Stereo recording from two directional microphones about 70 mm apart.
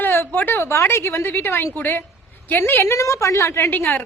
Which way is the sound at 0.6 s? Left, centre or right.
Left.